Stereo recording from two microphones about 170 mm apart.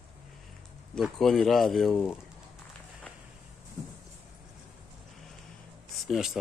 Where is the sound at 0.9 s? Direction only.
Centre (ahead or behind).